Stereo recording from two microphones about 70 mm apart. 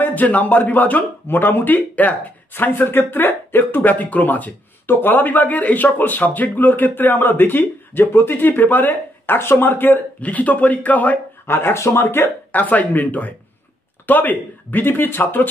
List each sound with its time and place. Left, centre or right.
0.0 s speech: left
11.4 s speech: left